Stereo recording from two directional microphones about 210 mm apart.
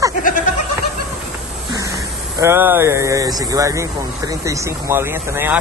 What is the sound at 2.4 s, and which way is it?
Speech, 10° right (ahead or behind).